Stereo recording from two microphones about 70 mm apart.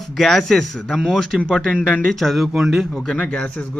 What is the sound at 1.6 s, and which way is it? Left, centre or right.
Speech, centre.